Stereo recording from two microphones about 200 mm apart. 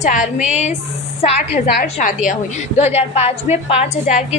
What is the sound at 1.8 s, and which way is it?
A woman's voice, 40° left (ahead or behind).